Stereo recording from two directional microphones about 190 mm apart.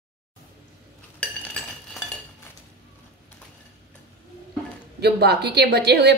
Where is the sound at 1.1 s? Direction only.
5° left (ahead or behind).